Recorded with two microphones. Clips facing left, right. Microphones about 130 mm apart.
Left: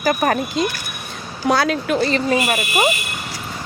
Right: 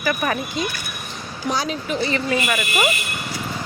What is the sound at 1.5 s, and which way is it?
Speech, 75° left (ahead or behind).